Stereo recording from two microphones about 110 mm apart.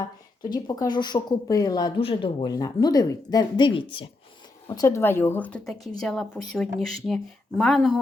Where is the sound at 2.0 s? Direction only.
55° left (ahead or behind).